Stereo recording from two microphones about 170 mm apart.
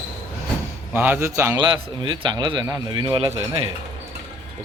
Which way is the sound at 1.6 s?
25° right (ahead or behind).